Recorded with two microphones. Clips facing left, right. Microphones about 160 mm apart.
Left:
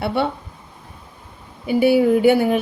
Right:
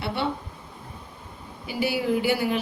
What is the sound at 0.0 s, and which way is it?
Speech, 55° left (ahead or behind).